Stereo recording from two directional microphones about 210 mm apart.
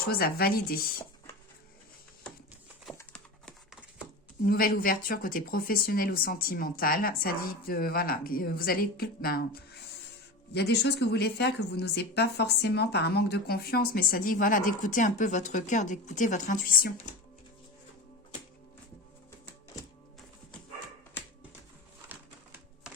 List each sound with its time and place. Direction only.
0.1 s speech: 45° left (ahead or behind)
3.0 s clip-clop: 5° left (ahead or behind)
4.4 s speech: 45° left (ahead or behind)
22.1 s typewriter: 10° right (ahead or behind)